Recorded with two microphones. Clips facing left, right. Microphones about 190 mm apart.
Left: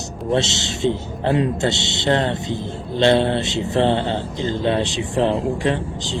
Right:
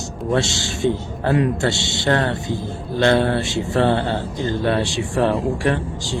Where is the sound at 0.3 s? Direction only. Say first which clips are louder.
Even; 20° left (ahead or behind).